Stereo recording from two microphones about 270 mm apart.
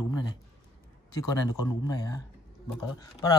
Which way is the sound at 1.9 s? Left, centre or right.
Centre.